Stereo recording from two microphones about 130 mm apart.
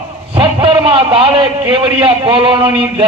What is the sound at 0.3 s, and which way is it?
A man's voice, 45° right (ahead or behind).